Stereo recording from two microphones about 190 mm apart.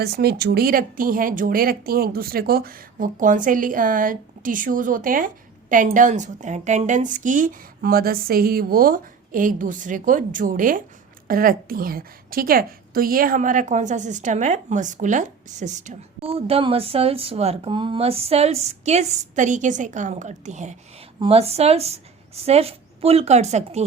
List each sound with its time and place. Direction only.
0.0 s a woman's voice: 55° right (ahead or behind); by 23.8 s 35° right (ahead or behind)